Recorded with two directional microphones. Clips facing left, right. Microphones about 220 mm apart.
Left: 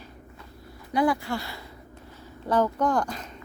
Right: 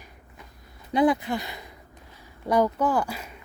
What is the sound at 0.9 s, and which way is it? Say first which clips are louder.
Speech: right 3 dB; 20° right (ahead or behind).